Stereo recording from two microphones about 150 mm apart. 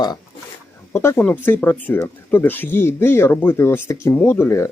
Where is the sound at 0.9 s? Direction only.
15° left (ahead or behind).